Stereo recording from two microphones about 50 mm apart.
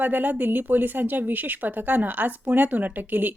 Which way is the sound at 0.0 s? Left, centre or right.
Right.